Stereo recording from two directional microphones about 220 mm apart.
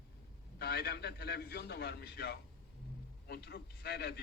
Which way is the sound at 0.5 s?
45° left (ahead or behind).